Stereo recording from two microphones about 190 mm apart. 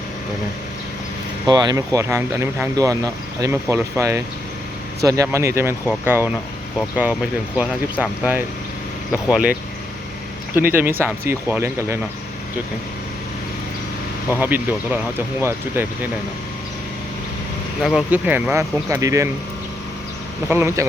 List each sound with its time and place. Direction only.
1.5 s speech: 20° right (ahead or behind)
14.3 s speech: 10° right (ahead or behind)
17.8 s speech: 5° right (ahead or behind)
20.5 s speech: 15° right (ahead or behind)